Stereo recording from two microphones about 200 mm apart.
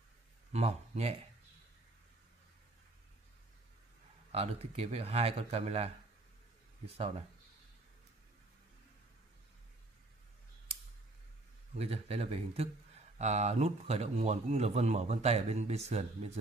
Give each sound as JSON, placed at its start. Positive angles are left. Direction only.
{"t": 0.5, "sound": "speech", "side_deg": -30}
{"t": 4.3, "sound": "a man's voice", "side_deg": -30}
{"t": 11.7, "sound": "a man's voice", "side_deg": -30}